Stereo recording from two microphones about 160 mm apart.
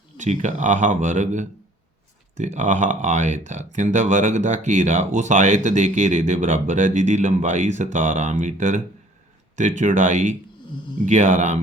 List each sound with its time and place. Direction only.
0.2 s speech: 50° right (ahead or behind)